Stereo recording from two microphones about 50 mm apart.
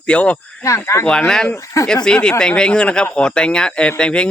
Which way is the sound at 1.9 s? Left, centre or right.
Centre.